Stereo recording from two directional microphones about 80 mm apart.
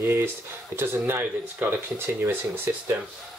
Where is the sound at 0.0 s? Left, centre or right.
Right.